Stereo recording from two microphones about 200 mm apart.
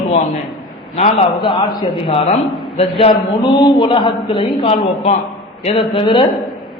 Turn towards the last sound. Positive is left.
turn(degrees=25)  # may be behind; listen again after turning